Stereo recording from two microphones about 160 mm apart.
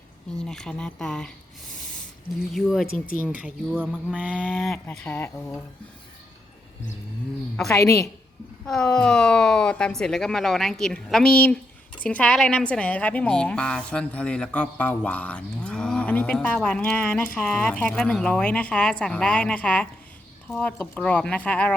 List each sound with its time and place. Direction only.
0.4 s a woman's voice: 5° left (ahead or behind)
2.5 s a woman's voice: centre (ahead or behind)
7.7 s a woman's voice: 20° left (ahead or behind)
8.6 s a woman's voice: 5° left (ahead or behind)